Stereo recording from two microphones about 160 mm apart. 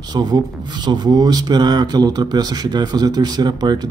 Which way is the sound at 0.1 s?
25° right (ahead or behind).